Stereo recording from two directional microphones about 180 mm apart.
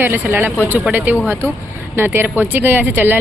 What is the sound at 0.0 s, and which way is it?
Speech, 10° right (ahead or behind).